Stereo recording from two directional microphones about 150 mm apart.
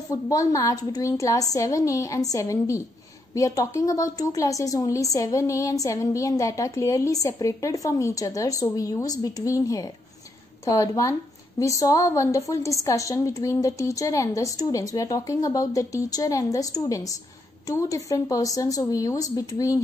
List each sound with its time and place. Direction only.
0.1 s a woman's voice: 20° left (ahead or behind)